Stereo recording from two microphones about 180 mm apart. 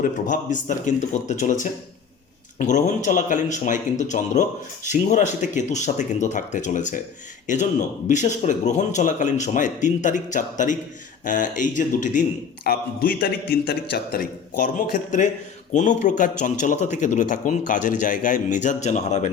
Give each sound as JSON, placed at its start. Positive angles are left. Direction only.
{"t": 0.0, "sound": "speech", "side_deg": 45}